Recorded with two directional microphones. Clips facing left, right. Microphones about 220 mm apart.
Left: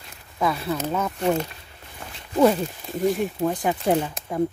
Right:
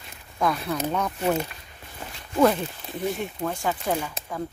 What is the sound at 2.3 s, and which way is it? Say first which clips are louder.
Speech: left 2 dB; 10° left (ahead or behind).